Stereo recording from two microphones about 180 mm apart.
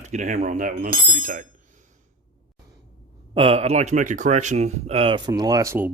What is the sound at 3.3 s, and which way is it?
Speech, 30° right (ahead or behind).